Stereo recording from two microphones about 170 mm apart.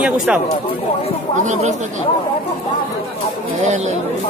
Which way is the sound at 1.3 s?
45° right (ahead or behind).